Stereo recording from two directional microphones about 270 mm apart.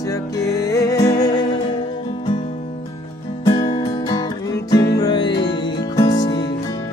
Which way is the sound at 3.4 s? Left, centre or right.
Centre.